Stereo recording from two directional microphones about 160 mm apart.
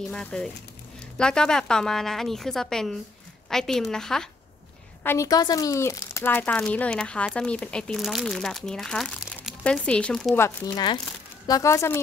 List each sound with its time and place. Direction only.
0.1 s a woman's voice: 5° left (ahead or behind)
5.0 s speech: 15° left (ahead or behind)
10.3 s speech: 15° left (ahead or behind)